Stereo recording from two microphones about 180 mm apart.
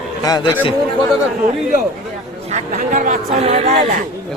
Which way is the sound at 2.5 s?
40° right (ahead or behind).